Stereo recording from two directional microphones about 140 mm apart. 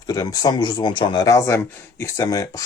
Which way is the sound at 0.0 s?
25° left (ahead or behind).